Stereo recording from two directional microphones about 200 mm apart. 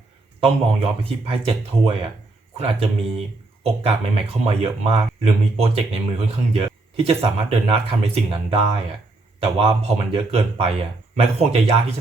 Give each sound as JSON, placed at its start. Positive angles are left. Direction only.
{"t": 0.3, "sound": "speech", "side_deg": -25}